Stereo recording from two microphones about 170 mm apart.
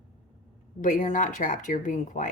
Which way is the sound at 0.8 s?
50° left (ahead or behind).